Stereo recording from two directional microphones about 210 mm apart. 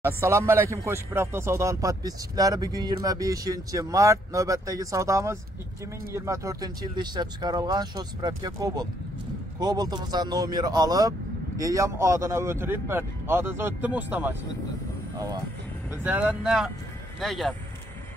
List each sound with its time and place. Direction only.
0.0 s speech: 10° right (ahead or behind)
15.9 s speech: 10° right (ahead or behind)